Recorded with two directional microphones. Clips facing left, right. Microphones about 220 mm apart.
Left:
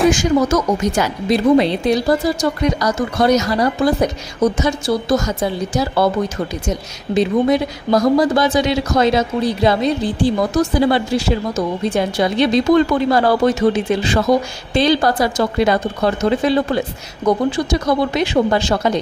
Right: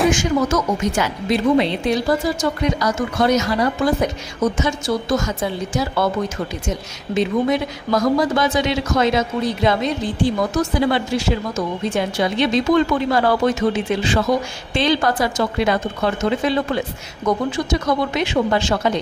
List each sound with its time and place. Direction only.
0.1 s speech: 35° left (ahead or behind)
7.2 s speech: 35° left (ahead or behind)